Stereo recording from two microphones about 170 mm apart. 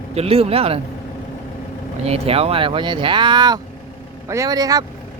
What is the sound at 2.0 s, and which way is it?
Speech, 35° right (ahead or behind).